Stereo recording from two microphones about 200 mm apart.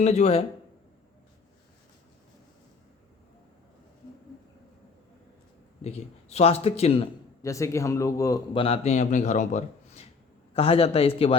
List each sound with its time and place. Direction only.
0.0 s a man's voice: 35° left (ahead or behind)
5.8 s a man's voice: 35° left (ahead or behind)
7.4 s a man's voice: 15° left (ahead or behind)
8.6 s a man's voice: 30° left (ahead or behind)